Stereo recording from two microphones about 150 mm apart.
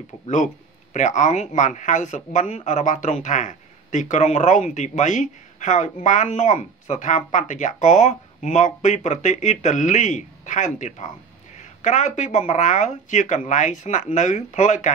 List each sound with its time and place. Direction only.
0.9 s speech: 55° left (ahead or behind)